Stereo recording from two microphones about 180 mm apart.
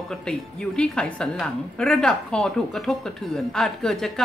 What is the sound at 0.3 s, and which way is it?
A woman's voice, 5° left (ahead or behind).